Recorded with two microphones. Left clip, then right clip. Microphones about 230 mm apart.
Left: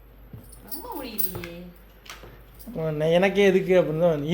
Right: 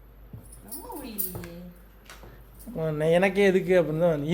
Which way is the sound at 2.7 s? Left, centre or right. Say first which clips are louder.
Left 1 dB; centre.